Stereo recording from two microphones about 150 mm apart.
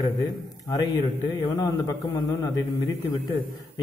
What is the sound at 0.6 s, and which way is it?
A man's voice, 25° left (ahead or behind).